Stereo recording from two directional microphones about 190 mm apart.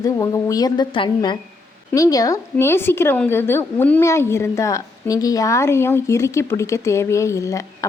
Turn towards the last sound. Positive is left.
turn(degrees=15)  # may be behind; listen again after turning